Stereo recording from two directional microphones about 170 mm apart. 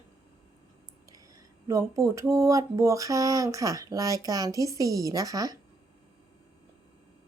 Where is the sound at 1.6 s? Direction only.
20° right (ahead or behind).